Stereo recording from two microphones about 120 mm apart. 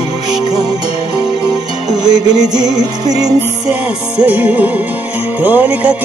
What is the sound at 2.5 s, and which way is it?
Music, 35° right (ahead or behind).